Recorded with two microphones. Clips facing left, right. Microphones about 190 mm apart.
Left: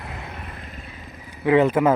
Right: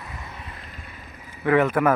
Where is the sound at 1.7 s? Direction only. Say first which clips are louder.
Left 2 dB; 25° left (ahead or behind).